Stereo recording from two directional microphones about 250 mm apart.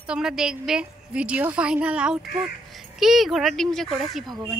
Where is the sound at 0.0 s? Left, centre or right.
Centre.